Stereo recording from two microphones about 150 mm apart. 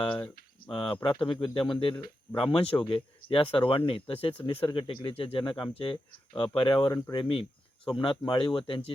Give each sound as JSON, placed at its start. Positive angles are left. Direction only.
{"t": 0.7, "sound": "speech", "side_deg": 30}